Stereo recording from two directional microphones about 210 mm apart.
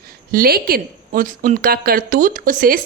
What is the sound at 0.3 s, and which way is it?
A woman's voice, 45° right (ahead or behind).